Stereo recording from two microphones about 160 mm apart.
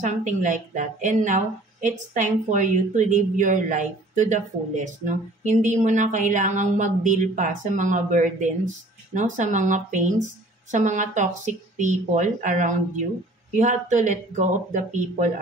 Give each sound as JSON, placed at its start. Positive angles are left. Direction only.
{"t": 0.0, "sound": "a woman's voice", "side_deg": -50}